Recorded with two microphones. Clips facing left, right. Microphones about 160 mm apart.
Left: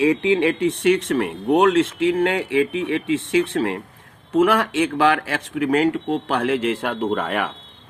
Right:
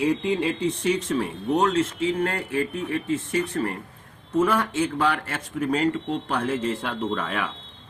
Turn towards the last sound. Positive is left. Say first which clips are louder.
# left 5 dB
turn(degrees=65)  # may be behind; listen again after turning